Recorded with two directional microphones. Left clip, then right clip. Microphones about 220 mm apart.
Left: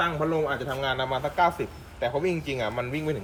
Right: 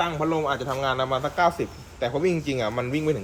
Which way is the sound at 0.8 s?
30° right (ahead or behind).